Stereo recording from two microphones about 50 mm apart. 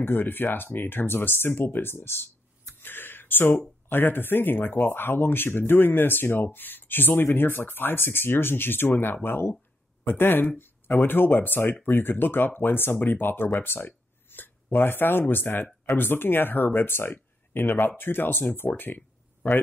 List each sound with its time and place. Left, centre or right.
0.0 s speech: left
2.8 s a sound: left
3.9 s speech: left